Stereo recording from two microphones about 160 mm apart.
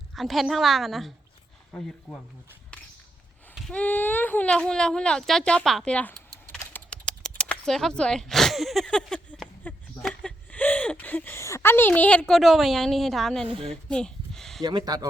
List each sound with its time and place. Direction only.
0.1 s a woman's voice: centre (ahead or behind)
3.5 s speech: 5° left (ahead or behind)
6.5 s a sound: 10° left (ahead or behind)
13.5 s a woman's voice: 35° right (ahead or behind)
13.8 s a sound: 5° left (ahead or behind)
14.6 s speech: 25° right (ahead or behind)